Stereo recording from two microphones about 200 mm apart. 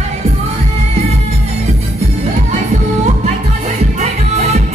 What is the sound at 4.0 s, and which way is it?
Music, 30° right (ahead or behind).